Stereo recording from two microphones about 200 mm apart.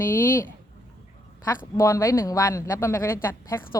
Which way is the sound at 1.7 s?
15° left (ahead or behind).